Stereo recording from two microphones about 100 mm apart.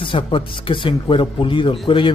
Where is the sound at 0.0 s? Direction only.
55° left (ahead or behind).